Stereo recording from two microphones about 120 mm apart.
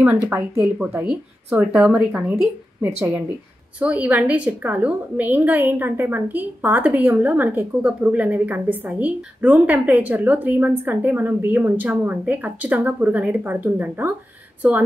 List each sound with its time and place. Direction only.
0.3 s a woman's voice: 20° right (ahead or behind)
2.4 s a woman's voice: 5° right (ahead or behind)